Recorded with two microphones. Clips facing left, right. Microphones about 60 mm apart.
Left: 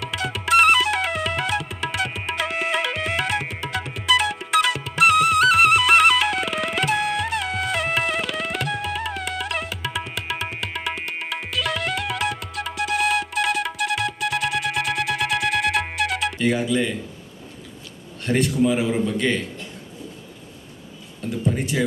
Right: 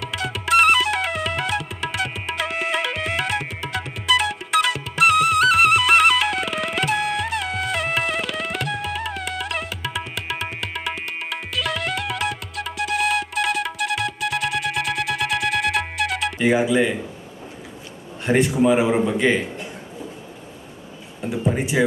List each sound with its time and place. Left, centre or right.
0.0 s music: centre
18.3 s a man's voice: centre
21.2 s a sound: centre